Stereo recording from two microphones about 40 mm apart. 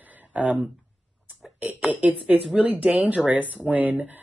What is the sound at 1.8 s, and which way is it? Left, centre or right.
Speech, right.